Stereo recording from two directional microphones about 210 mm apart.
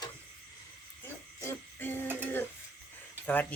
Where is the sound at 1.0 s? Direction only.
10° left (ahead or behind).